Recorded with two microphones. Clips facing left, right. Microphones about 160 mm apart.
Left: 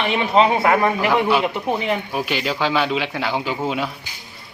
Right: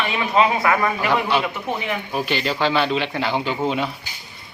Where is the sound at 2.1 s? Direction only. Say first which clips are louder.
Even; 5° left (ahead or behind).